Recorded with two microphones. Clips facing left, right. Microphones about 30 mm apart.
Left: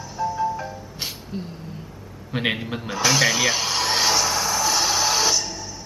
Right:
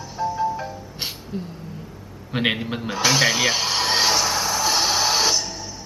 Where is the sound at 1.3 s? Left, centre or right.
Centre.